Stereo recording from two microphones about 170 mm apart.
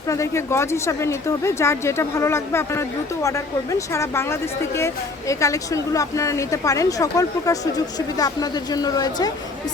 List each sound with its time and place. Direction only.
0.1 s a woman's voice: 15° left (ahead or behind)